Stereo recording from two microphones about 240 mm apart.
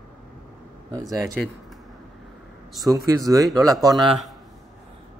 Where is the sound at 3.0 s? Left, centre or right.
Centre.